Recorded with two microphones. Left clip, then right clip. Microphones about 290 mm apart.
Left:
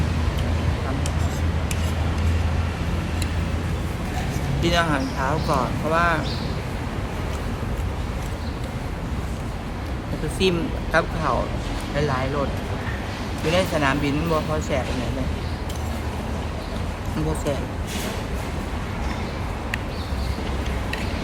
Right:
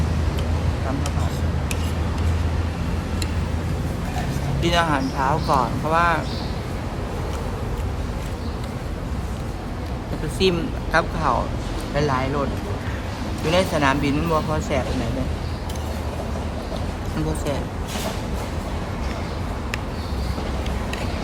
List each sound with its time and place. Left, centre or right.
4.6 s speech: centre
10.4 s speech: centre
13.5 s speech: centre